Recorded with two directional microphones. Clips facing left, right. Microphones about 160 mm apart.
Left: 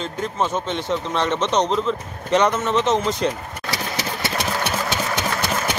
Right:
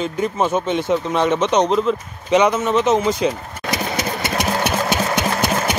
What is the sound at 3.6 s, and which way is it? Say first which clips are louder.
Engine: right 5 dB; 20° right (ahead or behind).